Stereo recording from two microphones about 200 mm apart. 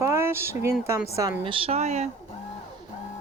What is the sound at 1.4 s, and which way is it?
Speech, 25° right (ahead or behind).